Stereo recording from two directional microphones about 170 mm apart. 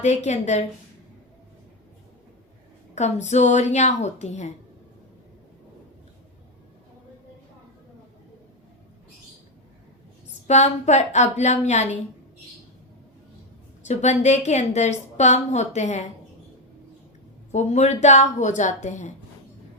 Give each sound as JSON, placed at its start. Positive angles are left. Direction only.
{"t": 0.0, "sound": "a woman's voice", "side_deg": 45}
{"t": 2.9, "sound": "a woman's voice", "side_deg": 40}
{"t": 10.4, "sound": "a woman's voice", "side_deg": 40}
{"t": 13.8, "sound": "a woman's voice", "side_deg": 40}
{"t": 17.5, "sound": "a woman's voice", "side_deg": 40}